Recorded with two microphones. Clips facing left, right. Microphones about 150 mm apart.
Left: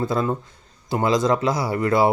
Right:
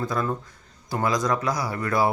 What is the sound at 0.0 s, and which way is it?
Speech, 25° left (ahead or behind).